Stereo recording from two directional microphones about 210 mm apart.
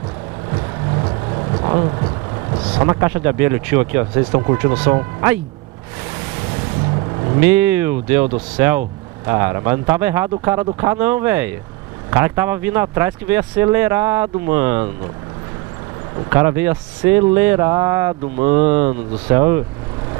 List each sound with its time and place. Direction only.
1.0 s vehicle: 25° right (ahead or behind)
3.0 s speech: 10° right (ahead or behind)
7.3 s speech: 10° right (ahead or behind)
16.3 s speech: 10° right (ahead or behind)